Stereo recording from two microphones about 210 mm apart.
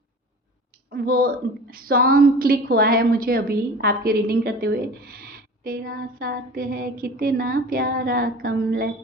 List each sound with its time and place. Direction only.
0.9 s a woman's voice: 45° right (ahead or behind)